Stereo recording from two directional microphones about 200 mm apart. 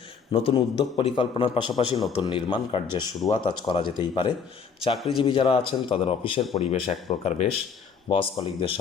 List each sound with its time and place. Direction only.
0.3 s a man's voice: 30° left (ahead or behind)